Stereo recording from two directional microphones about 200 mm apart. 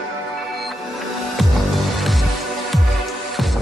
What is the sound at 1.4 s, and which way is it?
Music, centre (ahead or behind).